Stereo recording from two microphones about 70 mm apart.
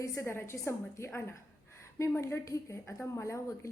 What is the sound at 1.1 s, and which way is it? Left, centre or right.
Gasp, left.